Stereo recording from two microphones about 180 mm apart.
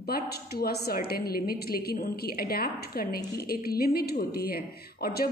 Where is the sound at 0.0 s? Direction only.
60° left (ahead or behind).